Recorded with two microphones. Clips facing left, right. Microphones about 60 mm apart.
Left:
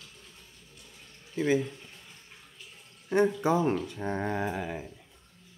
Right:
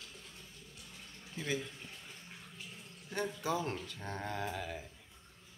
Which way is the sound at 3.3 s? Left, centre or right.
Left.